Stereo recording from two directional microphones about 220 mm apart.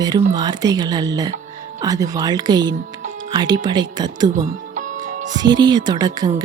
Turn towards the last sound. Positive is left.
turn(degrees=-20)  # may be behind; listen again after turning